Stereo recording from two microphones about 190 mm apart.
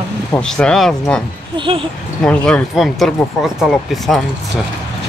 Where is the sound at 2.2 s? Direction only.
5° left (ahead or behind).